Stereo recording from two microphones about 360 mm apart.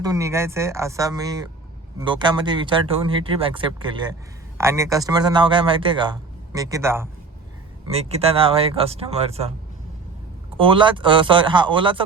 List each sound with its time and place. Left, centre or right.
0.0 s a man's voice: centre
10.6 s a man's voice: centre